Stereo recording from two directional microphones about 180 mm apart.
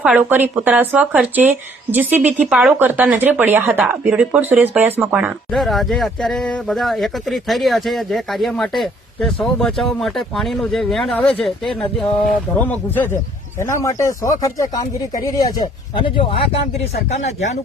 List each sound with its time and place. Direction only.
0.0 s speech: 5° right (ahead or behind); by 17.6 s 40° left (ahead or behind)